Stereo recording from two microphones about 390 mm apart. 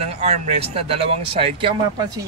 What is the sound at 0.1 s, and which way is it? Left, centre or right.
Speech, centre.